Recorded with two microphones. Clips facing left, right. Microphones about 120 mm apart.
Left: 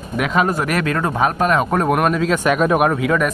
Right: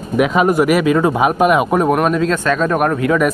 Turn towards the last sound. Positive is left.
turn(degrees=0)  # may be behind; listen again after turning